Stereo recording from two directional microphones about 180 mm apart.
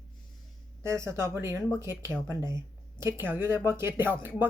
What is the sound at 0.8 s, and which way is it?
Speech, 15° right (ahead or behind).